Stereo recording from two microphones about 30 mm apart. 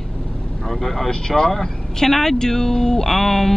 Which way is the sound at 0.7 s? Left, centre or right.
Centre.